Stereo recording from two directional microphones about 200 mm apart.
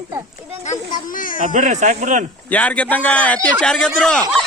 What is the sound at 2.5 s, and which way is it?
A man's voice, 5° left (ahead or behind).